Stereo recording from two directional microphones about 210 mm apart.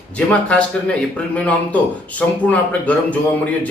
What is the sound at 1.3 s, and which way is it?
A man's voice, 5° left (ahead or behind).